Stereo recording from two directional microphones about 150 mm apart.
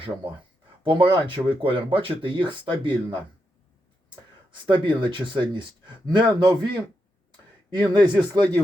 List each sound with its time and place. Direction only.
0.9 s speech: 35° right (ahead or behind)
4.6 s speech: 30° right (ahead or behind)
7.7 s speech: 30° right (ahead or behind)